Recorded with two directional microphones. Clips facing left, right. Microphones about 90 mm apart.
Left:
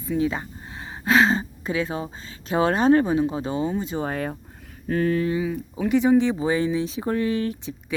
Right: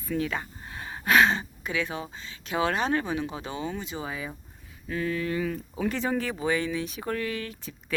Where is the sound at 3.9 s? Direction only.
50° left (ahead or behind).